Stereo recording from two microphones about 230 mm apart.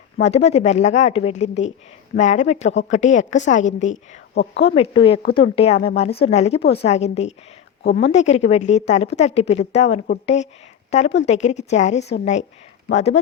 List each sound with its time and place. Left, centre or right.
0.2 s a woman's voice: left